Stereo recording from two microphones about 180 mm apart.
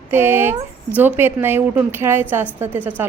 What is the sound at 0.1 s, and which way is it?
A woman's voice, 10° right (ahead or behind).